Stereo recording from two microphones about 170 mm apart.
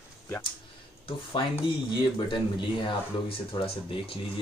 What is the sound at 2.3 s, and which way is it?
Speech, 30° left (ahead or behind).